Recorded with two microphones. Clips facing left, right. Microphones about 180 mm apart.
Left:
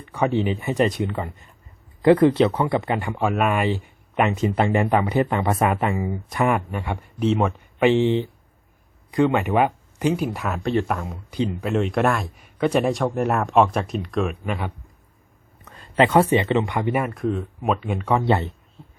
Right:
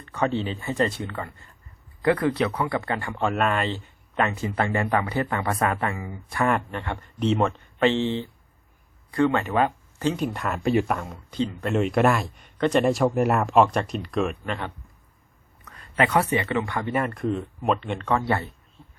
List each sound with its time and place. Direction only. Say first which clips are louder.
0.0 s speech: left 4 dB; 10° left (ahead or behind)
6.5 s speech: left 2 dB; 10° left (ahead or behind)
10.6 s speech: right 1 dB; 5° right (ahead or behind); by 11.7 s 10° left (ahead or behind)
11.7 s speech: right 1 dB; centre (ahead or behind)
15.6 s speech: left 5 dB; 25° left (ahead or behind); by 18.2 s 10° left (ahead or behind)
18.2 s speech: left 5 dB; 20° left (ahead or behind)